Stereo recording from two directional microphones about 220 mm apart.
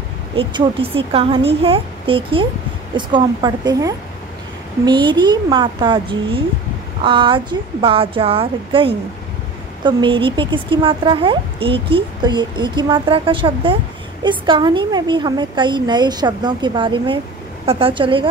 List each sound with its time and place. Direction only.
0.4 s speech: 20° right (ahead or behind)